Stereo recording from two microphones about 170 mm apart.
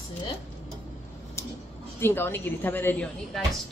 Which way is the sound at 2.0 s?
10° left (ahead or behind).